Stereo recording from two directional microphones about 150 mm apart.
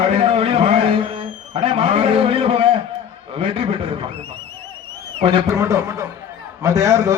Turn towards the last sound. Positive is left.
turn(degrees=-20)  # may be behind; listen again after turning